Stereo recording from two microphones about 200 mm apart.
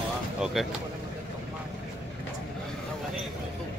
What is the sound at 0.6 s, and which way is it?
Speech, centre (ahead or behind).